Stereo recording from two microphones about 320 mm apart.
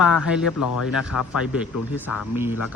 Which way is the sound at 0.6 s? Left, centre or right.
Left.